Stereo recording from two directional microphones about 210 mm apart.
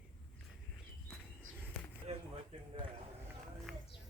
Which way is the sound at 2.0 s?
30° right (ahead or behind).